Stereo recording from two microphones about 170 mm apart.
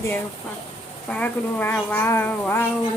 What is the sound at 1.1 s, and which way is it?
Speech, 10° left (ahead or behind).